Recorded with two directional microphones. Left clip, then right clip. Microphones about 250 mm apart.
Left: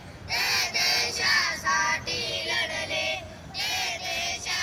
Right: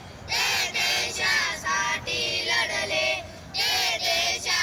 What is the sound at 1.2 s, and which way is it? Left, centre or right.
Music, centre.